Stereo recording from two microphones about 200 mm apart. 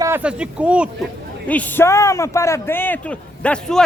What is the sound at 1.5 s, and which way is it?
Speech, 10° left (ahead or behind).